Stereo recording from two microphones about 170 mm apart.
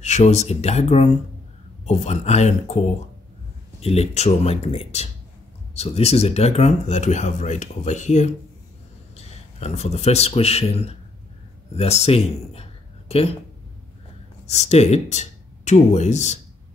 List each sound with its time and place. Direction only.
0.0 s speech: 45° left (ahead or behind)
3.8 s speech: 40° left (ahead or behind)
14.4 s speech: 40° left (ahead or behind)